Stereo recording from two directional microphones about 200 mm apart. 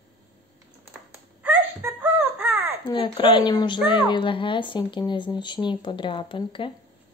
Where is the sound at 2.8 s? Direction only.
25° left (ahead or behind).